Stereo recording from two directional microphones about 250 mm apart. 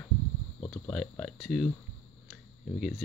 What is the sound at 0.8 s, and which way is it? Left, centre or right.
Speech, centre.